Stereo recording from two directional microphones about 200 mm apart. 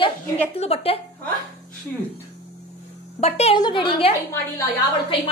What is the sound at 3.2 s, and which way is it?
Speech, 30° left (ahead or behind).